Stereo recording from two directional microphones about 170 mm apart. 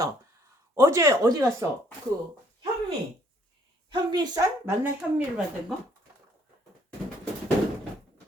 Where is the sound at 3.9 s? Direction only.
25° right (ahead or behind).